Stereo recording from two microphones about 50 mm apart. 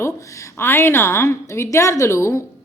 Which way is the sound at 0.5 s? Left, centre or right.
Left.